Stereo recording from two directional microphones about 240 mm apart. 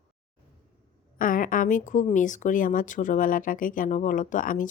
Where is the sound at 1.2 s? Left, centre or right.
Left.